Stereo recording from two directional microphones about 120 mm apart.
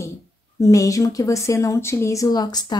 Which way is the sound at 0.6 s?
25° left (ahead or behind).